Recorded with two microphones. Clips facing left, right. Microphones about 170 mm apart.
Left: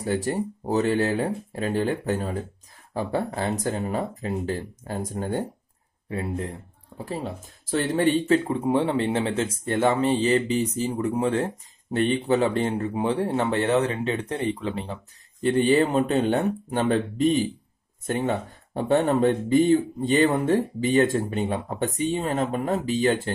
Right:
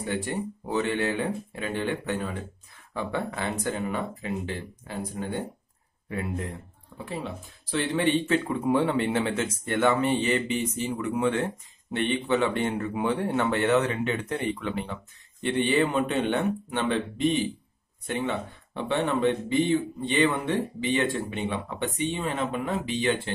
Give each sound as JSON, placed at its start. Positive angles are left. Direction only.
{"t": 0.0, "sound": "speech", "side_deg": 40}
{"t": 6.0, "sound": "speech", "side_deg": 30}